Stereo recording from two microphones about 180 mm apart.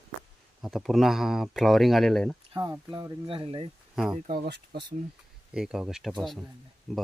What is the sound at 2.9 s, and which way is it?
Speech, 20° right (ahead or behind).